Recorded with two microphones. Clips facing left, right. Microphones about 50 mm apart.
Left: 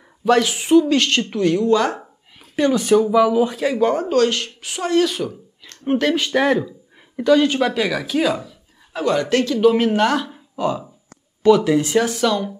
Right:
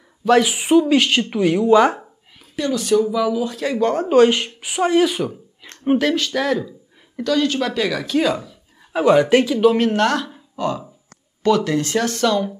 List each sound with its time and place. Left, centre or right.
0.3 s speech: centre
2.5 s speech: left
3.6 s speech: centre
4.1 s a woman's voice: centre
5.9 s speech: centre
6.1 s speech: left; by 8.5 s centre
8.9 s speech: centre
9.7 s speech: centre